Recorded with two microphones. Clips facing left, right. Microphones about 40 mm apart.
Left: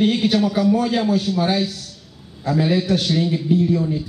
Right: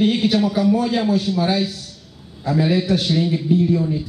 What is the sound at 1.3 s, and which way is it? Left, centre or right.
Speech, centre.